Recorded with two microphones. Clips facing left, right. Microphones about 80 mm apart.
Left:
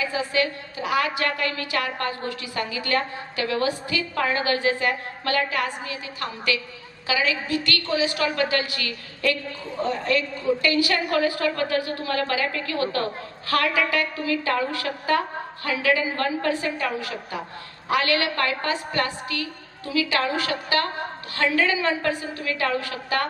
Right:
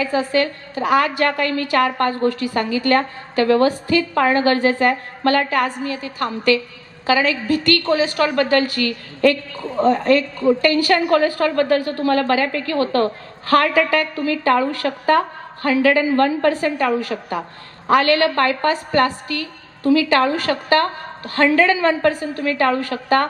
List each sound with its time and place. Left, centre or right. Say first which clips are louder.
0.0 s a woman's voice: right 6 dB; right